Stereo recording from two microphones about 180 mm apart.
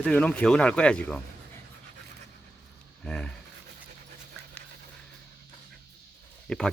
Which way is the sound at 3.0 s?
5° left (ahead or behind).